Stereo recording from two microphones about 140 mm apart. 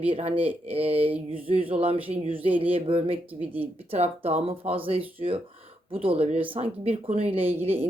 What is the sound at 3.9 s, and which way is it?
Speech, 50° right (ahead or behind).